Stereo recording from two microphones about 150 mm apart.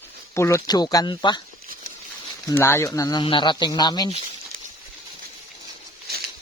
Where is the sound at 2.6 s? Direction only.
15° left (ahead or behind).